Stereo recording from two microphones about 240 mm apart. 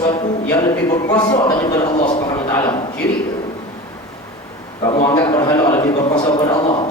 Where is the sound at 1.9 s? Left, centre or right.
Left.